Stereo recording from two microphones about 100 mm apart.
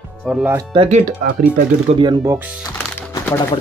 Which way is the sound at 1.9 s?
90° right.